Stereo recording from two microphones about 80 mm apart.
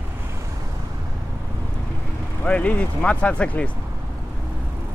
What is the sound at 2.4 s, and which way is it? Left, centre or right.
Speech, centre.